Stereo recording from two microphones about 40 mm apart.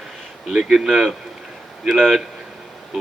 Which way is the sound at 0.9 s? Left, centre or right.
Centre.